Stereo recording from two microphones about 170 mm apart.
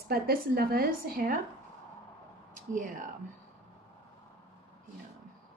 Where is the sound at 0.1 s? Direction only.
60° right (ahead or behind).